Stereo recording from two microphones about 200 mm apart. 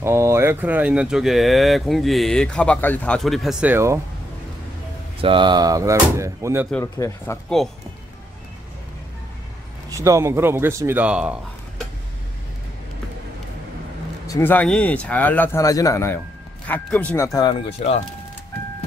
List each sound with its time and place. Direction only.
0.0 s speech: 15° right (ahead or behind)
5.2 s speech: 25° right (ahead or behind)
6.8 s speech: 15° left (ahead or behind)
7.4 s speech: centre (ahead or behind)
9.8 s speech: 15° right (ahead or behind)
14.2 s speech: 15° left (ahead or behind)
17.6 s speech: 30° left (ahead or behind)